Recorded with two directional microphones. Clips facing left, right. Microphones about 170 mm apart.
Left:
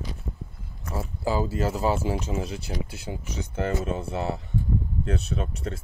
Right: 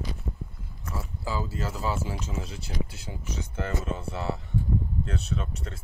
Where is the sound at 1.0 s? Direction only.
55° left (ahead or behind).